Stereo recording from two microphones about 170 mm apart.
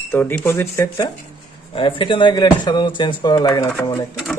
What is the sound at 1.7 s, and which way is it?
A man's voice, 30° left (ahead or behind).